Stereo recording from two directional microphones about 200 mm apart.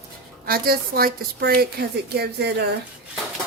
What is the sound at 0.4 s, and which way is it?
A woman's voice, 50° right (ahead or behind).